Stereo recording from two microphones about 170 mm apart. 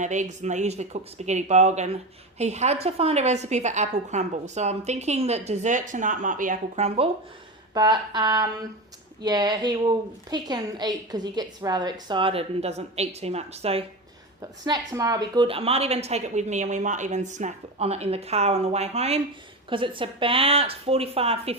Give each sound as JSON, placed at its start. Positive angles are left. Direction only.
{"t": 0.0, "sound": "a woman's voice", "side_deg": -45}
{"t": 7.7, "sound": "a woman's voice", "side_deg": -25}
{"t": 14.4, "sound": "a woman's voice", "side_deg": -20}